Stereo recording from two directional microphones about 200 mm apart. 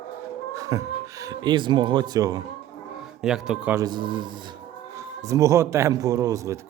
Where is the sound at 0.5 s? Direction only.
15° right (ahead or behind).